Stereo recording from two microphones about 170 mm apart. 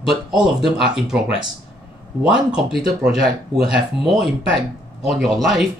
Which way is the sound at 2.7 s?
60° right (ahead or behind).